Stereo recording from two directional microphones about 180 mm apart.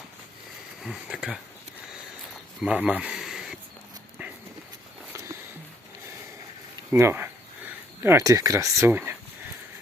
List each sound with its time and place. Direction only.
0.8 s speech: 5° right (ahead or behind)
2.6 s a sound: 5° right (ahead or behind)
6.9 s speech: 15° right (ahead or behind)